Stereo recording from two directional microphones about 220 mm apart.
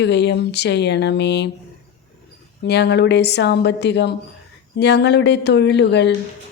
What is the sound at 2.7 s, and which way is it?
Speech, 50° left (ahead or behind).